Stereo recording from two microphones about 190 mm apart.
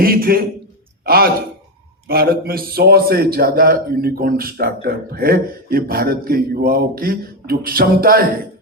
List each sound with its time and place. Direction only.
0.0 s a man's voice: 50° right (ahead or behind)